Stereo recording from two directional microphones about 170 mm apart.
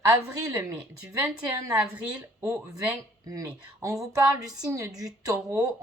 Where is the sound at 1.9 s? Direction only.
20° right (ahead or behind).